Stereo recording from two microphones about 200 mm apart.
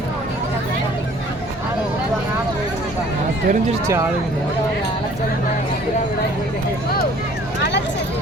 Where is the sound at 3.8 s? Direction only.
15° right (ahead or behind).